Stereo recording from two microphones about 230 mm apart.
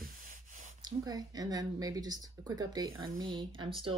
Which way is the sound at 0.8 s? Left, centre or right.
Centre.